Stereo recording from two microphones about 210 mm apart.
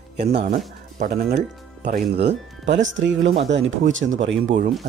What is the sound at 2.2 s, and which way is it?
Speech, 55° right (ahead or behind).